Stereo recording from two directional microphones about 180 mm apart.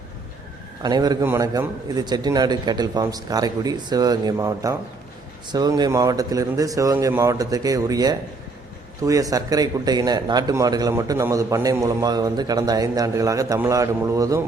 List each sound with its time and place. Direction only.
0.8 s a man's voice: 25° right (ahead or behind)